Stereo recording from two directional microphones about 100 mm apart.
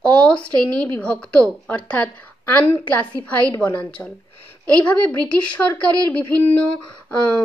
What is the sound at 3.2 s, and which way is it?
Speech, 40° right (ahead or behind).